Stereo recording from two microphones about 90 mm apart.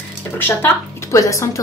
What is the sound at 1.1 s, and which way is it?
Speech, 35° left (ahead or behind).